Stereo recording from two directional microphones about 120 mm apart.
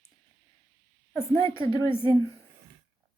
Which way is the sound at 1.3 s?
45° right (ahead or behind).